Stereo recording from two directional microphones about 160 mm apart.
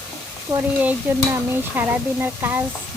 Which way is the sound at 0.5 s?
20° right (ahead or behind).